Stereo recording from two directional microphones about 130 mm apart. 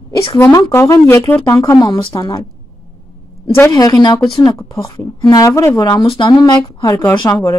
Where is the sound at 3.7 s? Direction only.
30° left (ahead or behind).